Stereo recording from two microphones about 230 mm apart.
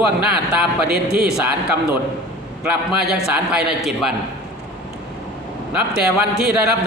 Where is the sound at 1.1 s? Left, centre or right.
Right.